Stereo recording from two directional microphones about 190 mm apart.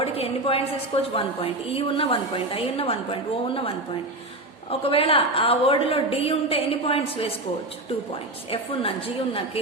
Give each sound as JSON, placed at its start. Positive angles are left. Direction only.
{"t": 0.0, "sound": "a woman's voice", "side_deg": 30}
{"t": 4.7, "sound": "a woman's voice", "side_deg": 30}
{"t": 8.4, "sound": "a woman's voice", "side_deg": 30}